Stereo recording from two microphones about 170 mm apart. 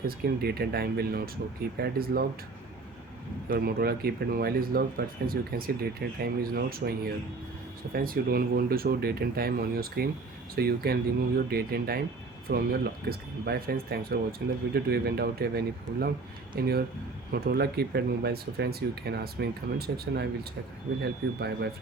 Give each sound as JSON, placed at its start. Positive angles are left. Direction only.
{"t": 0.4, "sound": "speech", "side_deg": -65}
{"t": 3.5, "sound": "speech", "side_deg": -65}